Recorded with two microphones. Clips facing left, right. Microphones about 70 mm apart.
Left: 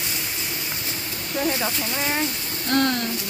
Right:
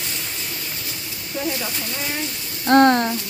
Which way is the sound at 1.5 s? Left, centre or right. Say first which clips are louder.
Left 2 dB; left.